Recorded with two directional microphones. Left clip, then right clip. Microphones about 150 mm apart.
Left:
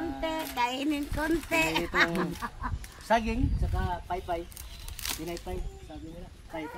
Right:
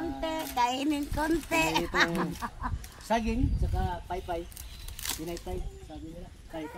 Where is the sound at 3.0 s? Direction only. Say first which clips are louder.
Left 3 dB; 25° left (ahead or behind).